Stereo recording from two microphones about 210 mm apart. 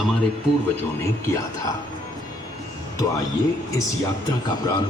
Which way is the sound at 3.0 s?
15° left (ahead or behind).